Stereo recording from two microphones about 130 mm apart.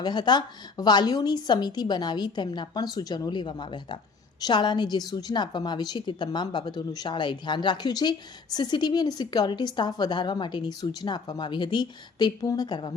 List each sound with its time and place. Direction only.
0.0 s a woman's voice: 35° left (ahead or behind)